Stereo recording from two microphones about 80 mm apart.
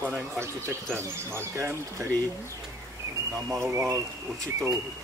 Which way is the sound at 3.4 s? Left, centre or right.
Right.